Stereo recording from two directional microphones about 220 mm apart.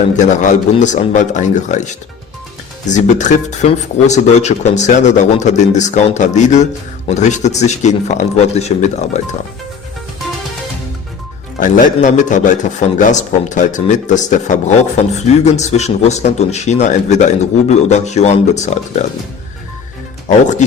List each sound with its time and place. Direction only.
0.2 s a man's voice: 35° left (ahead or behind)
11.6 s a man's voice: 35° left (ahead or behind)